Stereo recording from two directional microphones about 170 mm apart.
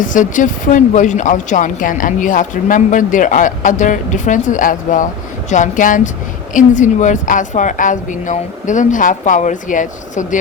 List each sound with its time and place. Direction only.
0.0 s speech: 50° left (ahead or behind)